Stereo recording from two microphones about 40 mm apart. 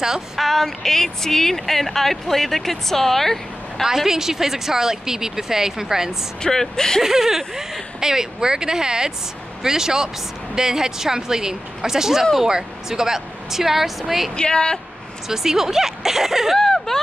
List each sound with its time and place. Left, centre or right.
0.4 s a woman's voice: centre
3.8 s speech: centre
6.4 s a woman's voice: centre
7.0 s speech: centre
14.3 s a woman's voice: left
15.2 s speech: centre
16.5 s a sound: centre